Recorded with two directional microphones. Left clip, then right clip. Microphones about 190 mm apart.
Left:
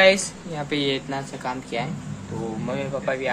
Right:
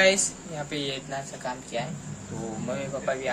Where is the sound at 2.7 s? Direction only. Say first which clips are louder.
Left 3 dB; centre (ahead or behind).